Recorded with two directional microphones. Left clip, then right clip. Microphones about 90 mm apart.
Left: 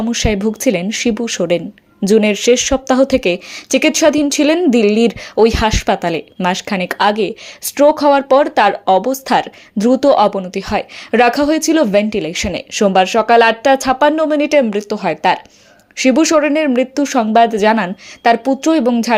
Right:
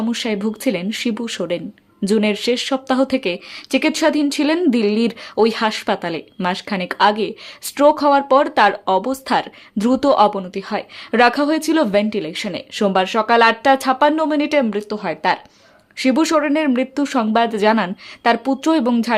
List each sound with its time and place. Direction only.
0.1 s speech: 30° left (ahead or behind)
9.2 s speech: 35° left (ahead or behind)
9.7 s a woman's voice: 20° left (ahead or behind)
10.5 s a woman's voice: 40° left (ahead or behind); by 18.9 s 20° left (ahead or behind)